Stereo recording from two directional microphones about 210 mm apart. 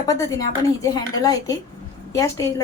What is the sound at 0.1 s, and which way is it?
A woman's voice, 15° left (ahead or behind).